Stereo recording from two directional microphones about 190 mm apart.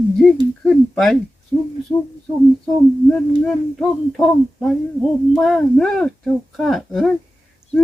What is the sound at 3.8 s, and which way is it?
Speech, centre (ahead or behind).